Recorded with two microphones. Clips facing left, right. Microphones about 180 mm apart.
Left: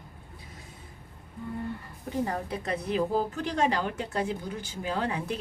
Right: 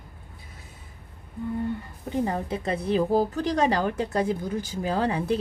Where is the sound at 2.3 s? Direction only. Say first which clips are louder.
Right 4 dB; 25° right (ahead or behind).